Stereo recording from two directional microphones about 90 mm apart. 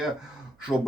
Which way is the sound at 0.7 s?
15° left (ahead or behind).